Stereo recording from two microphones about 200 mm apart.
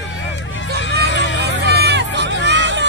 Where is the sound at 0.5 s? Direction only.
65° left (ahead or behind).